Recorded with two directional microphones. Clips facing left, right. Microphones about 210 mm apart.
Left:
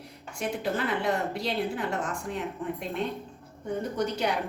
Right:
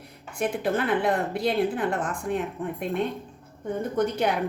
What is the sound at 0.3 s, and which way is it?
A woman's voice, 55° right (ahead or behind).